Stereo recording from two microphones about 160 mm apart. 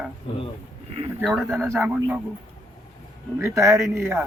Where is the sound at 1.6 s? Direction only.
15° right (ahead or behind).